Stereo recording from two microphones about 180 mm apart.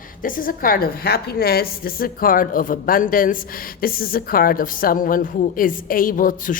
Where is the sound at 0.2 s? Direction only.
50° left (ahead or behind).